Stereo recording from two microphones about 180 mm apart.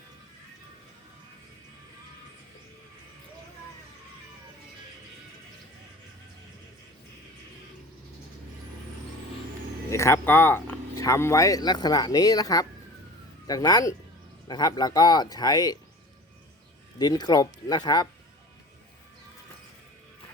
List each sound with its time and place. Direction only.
9.9 s speech: 15° left (ahead or behind)
17.0 s speech: 25° left (ahead or behind)